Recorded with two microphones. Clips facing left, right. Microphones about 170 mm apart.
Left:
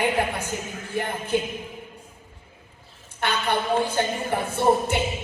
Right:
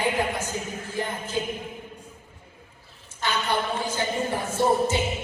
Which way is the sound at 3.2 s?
60° left (ahead or behind).